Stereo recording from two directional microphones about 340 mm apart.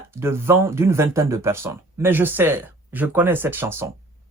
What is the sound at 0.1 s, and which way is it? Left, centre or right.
Speech, centre.